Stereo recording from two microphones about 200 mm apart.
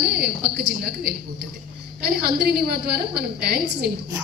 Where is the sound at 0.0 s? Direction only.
55° right (ahead or behind).